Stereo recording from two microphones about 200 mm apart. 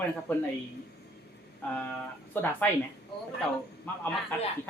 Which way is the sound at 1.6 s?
10° left (ahead or behind).